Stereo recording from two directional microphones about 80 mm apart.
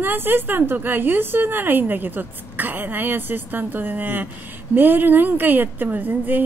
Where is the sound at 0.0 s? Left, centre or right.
Right.